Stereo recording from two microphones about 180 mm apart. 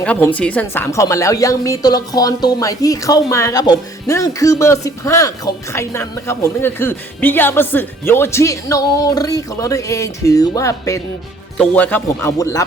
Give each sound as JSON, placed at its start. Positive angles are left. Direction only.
{"t": 0.0, "sound": "a woman's voice", "side_deg": 5}
{"t": 11.5, "sound": "a woman's voice", "side_deg": 5}